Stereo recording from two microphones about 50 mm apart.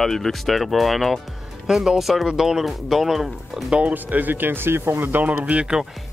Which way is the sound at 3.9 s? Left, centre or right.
Right.